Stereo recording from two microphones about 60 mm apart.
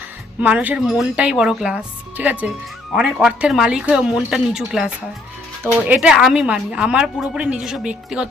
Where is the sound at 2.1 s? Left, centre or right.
Right.